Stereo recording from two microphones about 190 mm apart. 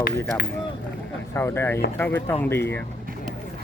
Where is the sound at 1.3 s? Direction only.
15° left (ahead or behind).